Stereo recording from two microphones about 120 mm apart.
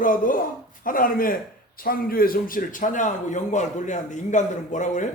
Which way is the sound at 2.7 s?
90° left.